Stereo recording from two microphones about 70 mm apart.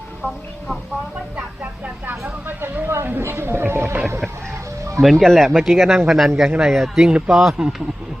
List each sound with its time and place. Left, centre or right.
2.0 s speech: right
4.9 s speech: centre